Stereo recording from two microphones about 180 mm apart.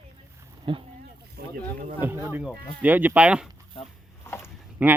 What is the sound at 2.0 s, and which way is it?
Speech, 10° right (ahead or behind).